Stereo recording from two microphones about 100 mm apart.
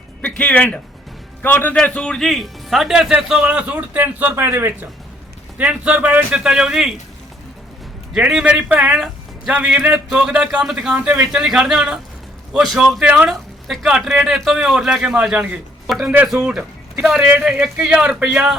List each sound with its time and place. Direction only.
0.2 s a man's voice: 15° left (ahead or behind); by 6.9 s 5° right (ahead or behind)
8.1 s a man's voice: 5° right (ahead or behind)